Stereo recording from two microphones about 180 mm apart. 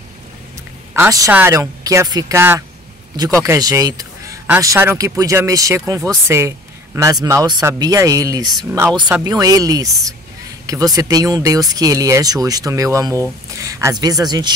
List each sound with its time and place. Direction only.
0.9 s speech: 15° right (ahead or behind)